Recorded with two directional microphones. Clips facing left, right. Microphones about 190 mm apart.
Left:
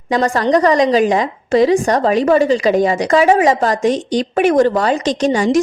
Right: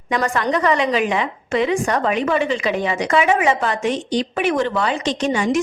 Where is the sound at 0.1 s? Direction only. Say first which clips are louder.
Left 6 dB; 35° left (ahead or behind).